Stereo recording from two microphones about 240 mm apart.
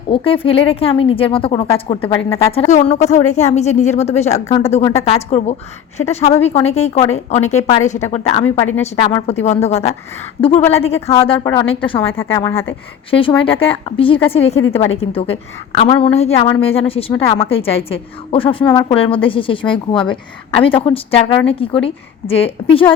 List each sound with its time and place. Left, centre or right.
0.1 s a woman's voice: left
12.1 s a woman's voice: centre